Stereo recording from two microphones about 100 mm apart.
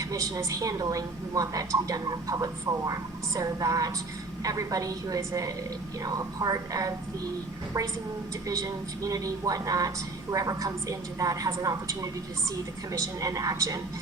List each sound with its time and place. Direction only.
0.0 s a woman's voice: 35° right (ahead or behind)
8.4 s a woman's voice: 35° right (ahead or behind)